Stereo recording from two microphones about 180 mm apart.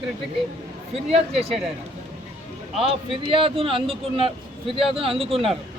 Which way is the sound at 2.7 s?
35° right (ahead or behind).